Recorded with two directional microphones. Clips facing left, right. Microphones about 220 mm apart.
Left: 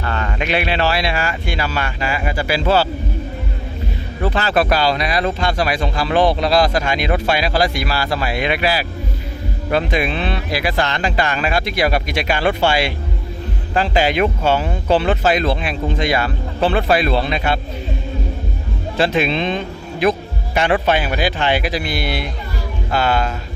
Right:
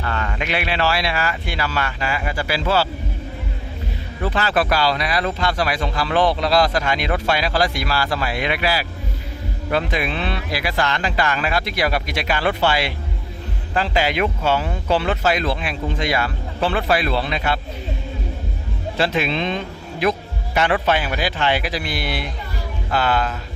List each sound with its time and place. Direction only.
0.0 s speech: 30° left (ahead or behind)
4.2 s speech: 30° left (ahead or behind)
18.9 s speech: 20° left (ahead or behind)